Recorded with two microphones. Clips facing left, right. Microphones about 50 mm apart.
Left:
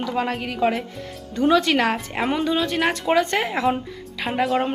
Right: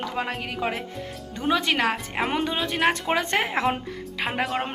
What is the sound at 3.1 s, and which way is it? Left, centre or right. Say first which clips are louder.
Speech: left 3 dB; right.